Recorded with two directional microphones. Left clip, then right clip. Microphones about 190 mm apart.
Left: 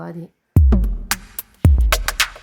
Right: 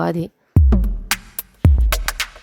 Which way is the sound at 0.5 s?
Centre (ahead or behind).